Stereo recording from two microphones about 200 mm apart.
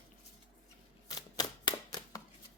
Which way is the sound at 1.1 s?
20° left (ahead or behind).